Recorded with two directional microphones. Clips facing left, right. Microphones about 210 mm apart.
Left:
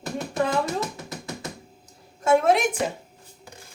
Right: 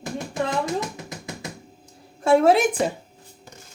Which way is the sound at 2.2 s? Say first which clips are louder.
Right 3 dB; 30° right (ahead or behind).